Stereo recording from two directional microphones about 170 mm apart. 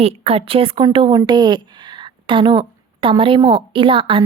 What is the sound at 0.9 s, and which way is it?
A woman's voice, 25° right (ahead or behind).